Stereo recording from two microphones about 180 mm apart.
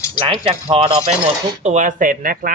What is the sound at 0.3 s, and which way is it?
Speech, 30° right (ahead or behind).